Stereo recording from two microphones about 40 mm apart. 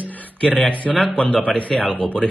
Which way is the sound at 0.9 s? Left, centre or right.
Centre.